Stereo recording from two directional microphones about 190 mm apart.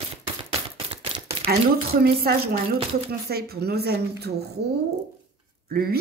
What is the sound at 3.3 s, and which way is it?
A woman's voice, 55° right (ahead or behind).